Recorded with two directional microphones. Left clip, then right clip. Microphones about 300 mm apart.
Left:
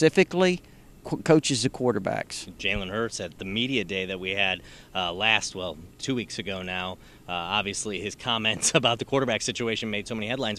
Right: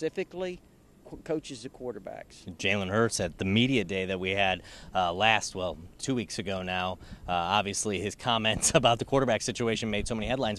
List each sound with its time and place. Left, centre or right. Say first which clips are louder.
0.0 s speech: left 12 dB; left
2.6 s speech: right 1 dB; right
3.8 s speech: left 1 dB; centre